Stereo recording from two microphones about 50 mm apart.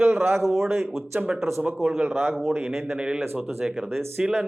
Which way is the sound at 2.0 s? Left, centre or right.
Right.